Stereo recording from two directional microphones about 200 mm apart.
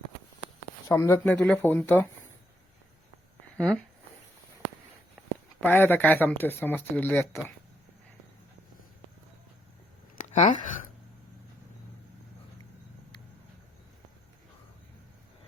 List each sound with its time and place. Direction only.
0.9 s speech: 15° left (ahead or behind)
3.6 s speech: 5° left (ahead or behind)
5.5 s speech: 10° left (ahead or behind)
10.2 s a sound: 35° left (ahead or behind)